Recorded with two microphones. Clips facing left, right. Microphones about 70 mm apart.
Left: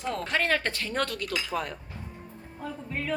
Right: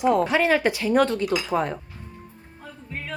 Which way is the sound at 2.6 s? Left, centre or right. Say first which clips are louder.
Left 3 dB; centre.